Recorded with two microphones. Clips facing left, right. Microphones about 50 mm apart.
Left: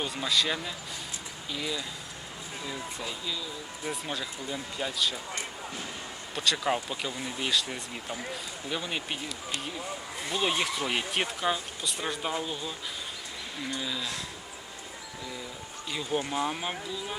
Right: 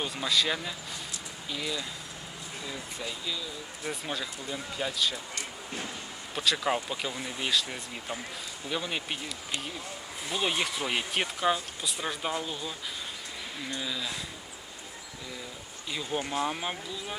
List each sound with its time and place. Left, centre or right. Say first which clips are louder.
0.0 s speech: even; centre
6.3 s speech: even; centre
10.2 s speech: left 1 dB; centre
15.9 s speech: left 1 dB; centre